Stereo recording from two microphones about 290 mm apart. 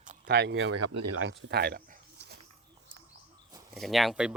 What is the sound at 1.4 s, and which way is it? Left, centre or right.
Dog, right.